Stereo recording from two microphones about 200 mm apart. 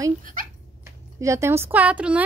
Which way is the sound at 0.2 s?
40° right (ahead or behind).